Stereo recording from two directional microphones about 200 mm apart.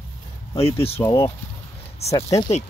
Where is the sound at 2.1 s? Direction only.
15° left (ahead or behind).